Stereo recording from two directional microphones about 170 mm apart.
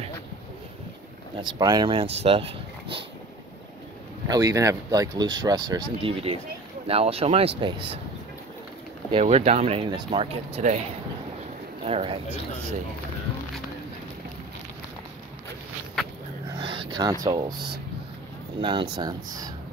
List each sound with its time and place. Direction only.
1.4 s speech: 25° right (ahead or behind)
4.3 s speech: 20° right (ahead or behind)
9.1 s speech: 40° right (ahead or behind)
11.8 s speech: 35° right (ahead or behind)
16.5 s speech: 30° right (ahead or behind)